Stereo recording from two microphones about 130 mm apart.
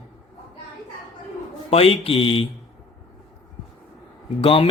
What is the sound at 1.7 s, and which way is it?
Speech, 50° left (ahead or behind).